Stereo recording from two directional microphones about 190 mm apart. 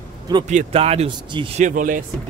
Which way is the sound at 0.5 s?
35° right (ahead or behind).